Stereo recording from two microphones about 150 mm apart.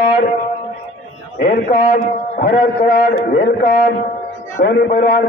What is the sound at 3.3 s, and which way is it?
A man's voice, 85° left.